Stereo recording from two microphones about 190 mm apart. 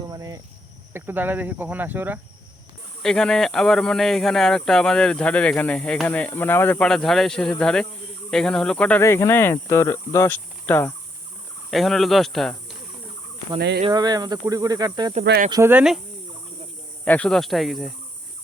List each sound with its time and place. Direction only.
0.1 s cricket: 20° right (ahead or behind)
0.9 s speech: 10° right (ahead or behind)
3.0 s speech: 5° left (ahead or behind)
13.6 s speech: 60° right (ahead or behind)
13.8 s speech: 20° right (ahead or behind)
15.2 s speech: 60° right (ahead or behind)
15.4 s speech: 20° right (ahead or behind)
15.7 s speech: 5° right (ahead or behind)
17.1 s speech: 5° left (ahead or behind)